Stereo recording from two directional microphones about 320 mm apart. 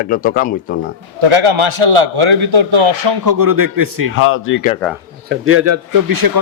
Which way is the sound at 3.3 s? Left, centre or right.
Right.